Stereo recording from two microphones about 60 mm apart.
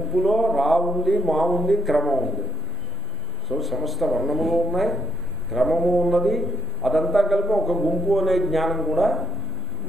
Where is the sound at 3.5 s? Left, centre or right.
Centre.